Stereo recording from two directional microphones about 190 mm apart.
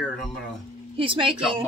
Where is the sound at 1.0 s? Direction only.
25° right (ahead or behind).